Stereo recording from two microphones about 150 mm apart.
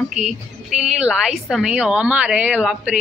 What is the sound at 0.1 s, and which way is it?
A woman's voice, 5° right (ahead or behind).